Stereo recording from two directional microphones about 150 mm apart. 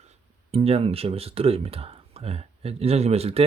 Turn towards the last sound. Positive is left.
turn(degrees=-40)  # may be behind; listen again after turning